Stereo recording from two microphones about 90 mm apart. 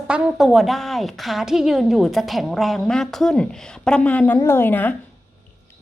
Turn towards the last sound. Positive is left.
turn(degrees=20)  # may be behind; listen again after turning